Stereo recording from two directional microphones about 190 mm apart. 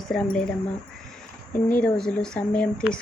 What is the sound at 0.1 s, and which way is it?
Speech, 5° left (ahead or behind).